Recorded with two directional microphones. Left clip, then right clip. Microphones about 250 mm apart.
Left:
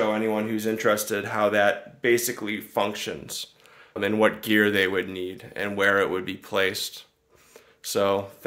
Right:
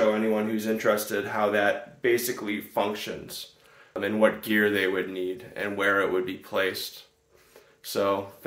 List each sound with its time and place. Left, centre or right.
0.1 s speech: left